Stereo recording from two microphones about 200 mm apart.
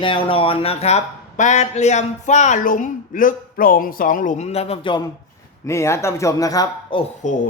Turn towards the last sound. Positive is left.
turn(degrees=40)  # may be behind; listen again after turning